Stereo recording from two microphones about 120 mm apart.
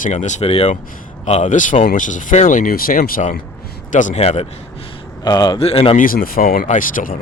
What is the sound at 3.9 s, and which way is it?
Speech, 90° left.